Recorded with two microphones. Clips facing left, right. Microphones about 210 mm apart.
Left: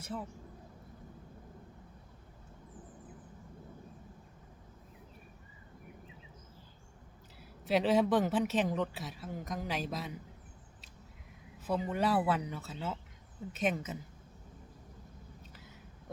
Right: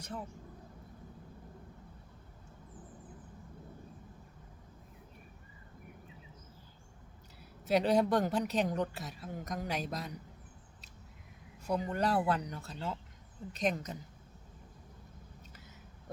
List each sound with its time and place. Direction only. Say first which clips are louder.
7.6 s a woman's voice: even; centre (ahead or behind)
11.6 s a woman's voice: left 1 dB; 5° left (ahead or behind)